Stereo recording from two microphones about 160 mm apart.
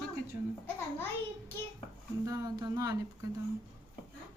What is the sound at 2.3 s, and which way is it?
Speech, 25° right (ahead or behind).